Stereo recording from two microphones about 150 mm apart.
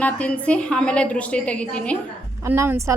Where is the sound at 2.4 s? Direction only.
15° right (ahead or behind).